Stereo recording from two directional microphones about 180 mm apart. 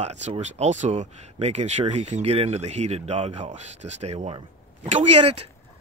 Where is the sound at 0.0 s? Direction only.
35° right (ahead or behind).